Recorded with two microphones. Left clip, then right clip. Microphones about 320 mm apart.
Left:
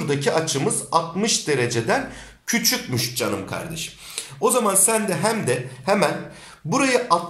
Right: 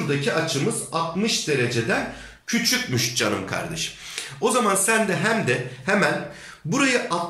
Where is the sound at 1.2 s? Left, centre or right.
Centre.